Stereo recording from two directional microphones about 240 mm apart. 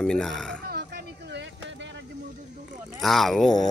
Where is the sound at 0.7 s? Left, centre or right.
Right.